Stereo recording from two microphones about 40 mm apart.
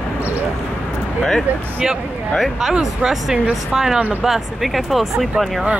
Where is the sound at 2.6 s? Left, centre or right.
Centre.